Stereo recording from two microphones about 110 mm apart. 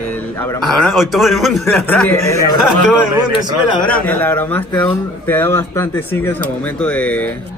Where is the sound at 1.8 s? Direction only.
15° left (ahead or behind).